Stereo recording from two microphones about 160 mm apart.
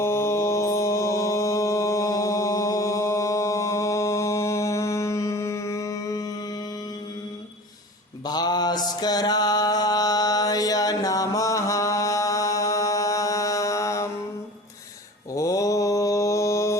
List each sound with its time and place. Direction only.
0.0 s mantra: 15° left (ahead or behind)
8.2 s mantra: 25° left (ahead or behind)
15.3 s mantra: 20° left (ahead or behind)